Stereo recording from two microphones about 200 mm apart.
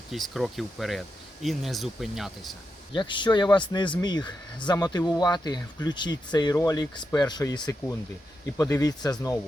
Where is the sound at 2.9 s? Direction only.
25° left (ahead or behind).